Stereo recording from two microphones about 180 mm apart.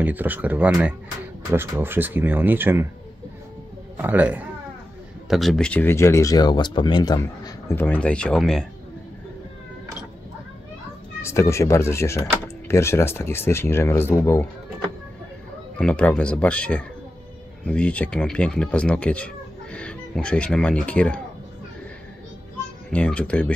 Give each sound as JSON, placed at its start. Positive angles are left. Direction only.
{"t": 0.0, "sound": "speech", "side_deg": -10}
{"t": 3.9, "sound": "speech", "side_deg": -10}
{"t": 7.2, "sound": "speech", "side_deg": 10}
{"t": 11.2, "sound": "speech", "side_deg": 15}
{"t": 15.8, "sound": "speech", "side_deg": 5}
{"t": 22.8, "sound": "speech", "side_deg": 5}